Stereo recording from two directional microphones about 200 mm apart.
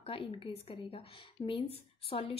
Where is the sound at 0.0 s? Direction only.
25° left (ahead or behind).